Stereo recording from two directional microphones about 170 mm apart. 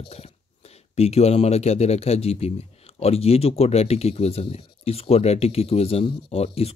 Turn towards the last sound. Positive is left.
turn(degrees=35)  # may be behind; listen again after turning